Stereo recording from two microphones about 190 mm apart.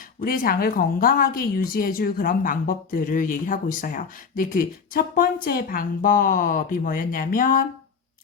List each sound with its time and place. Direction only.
0.2 s speech: 50° left (ahead or behind)